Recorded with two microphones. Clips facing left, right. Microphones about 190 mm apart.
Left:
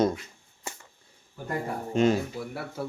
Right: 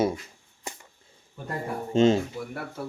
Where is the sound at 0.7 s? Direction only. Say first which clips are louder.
Right 1 dB; 15° right (ahead or behind).